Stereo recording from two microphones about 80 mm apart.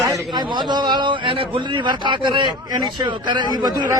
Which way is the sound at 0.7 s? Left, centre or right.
Right.